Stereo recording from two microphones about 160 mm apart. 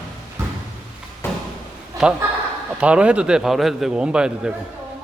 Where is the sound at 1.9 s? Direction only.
20° right (ahead or behind).